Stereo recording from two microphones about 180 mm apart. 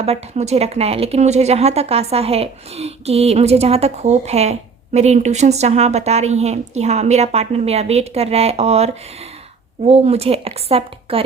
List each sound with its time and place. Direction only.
0.0 s speech: 35° right (ahead or behind)